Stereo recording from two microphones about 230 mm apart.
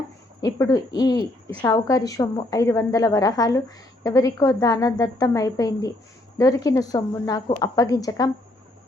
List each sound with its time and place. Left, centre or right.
0.4 s a woman's voice: centre